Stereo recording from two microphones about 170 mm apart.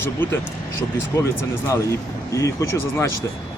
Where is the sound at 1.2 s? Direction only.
15° left (ahead or behind).